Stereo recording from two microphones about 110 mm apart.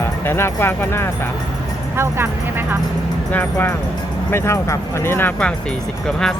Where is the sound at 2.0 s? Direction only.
20° right (ahead or behind).